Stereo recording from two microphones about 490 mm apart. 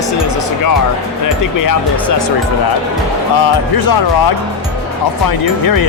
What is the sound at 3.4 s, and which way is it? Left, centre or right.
Speech, left.